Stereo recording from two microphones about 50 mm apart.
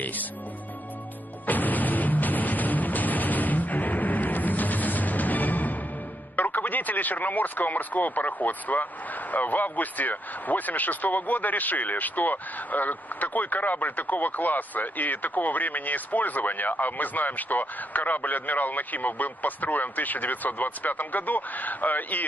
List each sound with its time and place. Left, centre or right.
0.0 s speech: left
1.4 s music: left
6.3 s speech: left